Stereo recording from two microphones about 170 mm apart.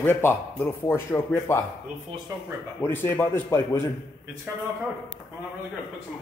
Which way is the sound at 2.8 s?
15° left (ahead or behind).